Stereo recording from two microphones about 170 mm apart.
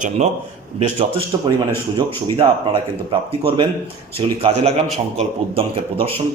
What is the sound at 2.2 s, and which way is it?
Speech, 25° right (ahead or behind).